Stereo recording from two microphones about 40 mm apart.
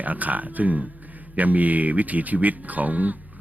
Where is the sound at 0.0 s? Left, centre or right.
Right.